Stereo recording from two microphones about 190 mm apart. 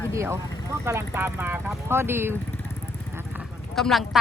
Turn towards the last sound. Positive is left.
turn(degrees=0)  # may be behind; listen again after turning